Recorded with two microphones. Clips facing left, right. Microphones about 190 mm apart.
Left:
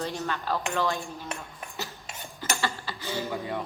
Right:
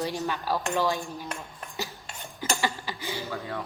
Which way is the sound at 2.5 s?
15° right (ahead or behind).